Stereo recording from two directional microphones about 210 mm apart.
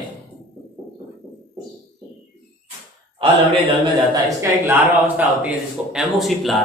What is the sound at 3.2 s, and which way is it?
Speech, 25° right (ahead or behind).